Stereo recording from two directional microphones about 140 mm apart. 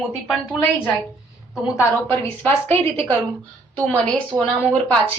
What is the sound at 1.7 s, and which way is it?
A woman's voice, 15° left (ahead or behind).